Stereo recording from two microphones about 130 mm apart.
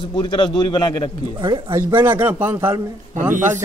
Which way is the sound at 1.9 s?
15° right (ahead or behind).